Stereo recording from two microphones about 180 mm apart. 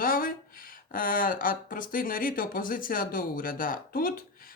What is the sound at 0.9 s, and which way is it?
Speech, 50° left (ahead or behind).